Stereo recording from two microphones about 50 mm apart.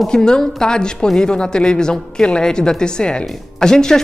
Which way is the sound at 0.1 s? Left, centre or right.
Centre.